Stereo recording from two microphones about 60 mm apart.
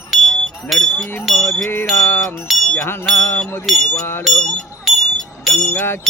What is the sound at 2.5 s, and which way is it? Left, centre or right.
Speech, centre.